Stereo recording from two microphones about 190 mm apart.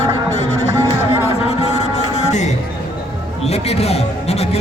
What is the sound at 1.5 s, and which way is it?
Music, 35° left (ahead or behind).